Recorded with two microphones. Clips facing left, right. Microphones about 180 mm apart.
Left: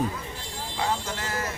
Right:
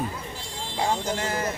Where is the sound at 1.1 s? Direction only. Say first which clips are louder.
Right 4 dB; 20° right (ahead or behind).